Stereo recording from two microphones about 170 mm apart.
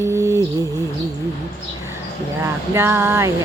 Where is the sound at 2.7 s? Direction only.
15° right (ahead or behind).